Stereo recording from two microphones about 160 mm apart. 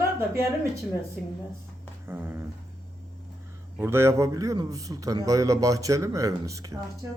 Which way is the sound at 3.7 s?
15° right (ahead or behind).